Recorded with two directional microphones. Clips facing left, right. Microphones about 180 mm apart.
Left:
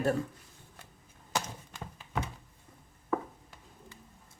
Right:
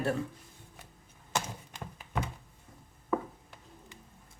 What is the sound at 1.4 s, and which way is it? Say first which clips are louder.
Thunk: even; 15° right (ahead or behind).